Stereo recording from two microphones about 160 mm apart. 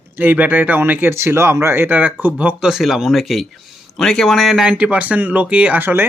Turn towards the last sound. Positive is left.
turn(degrees=-10)  # may be behind; listen again after turning